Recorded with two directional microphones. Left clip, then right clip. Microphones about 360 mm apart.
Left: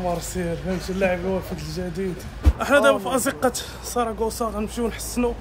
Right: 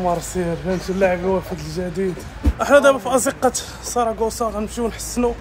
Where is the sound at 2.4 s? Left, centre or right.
Centre.